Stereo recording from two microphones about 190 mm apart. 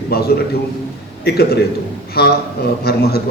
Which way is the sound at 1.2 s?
55° left (ahead or behind).